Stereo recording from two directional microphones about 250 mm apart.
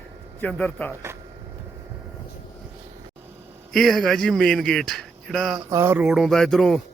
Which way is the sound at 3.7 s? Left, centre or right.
Centre.